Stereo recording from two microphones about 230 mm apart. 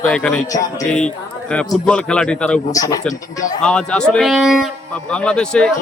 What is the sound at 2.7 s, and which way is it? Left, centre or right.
Speech, centre.